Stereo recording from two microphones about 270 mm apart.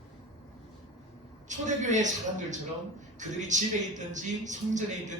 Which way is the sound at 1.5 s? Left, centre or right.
Right.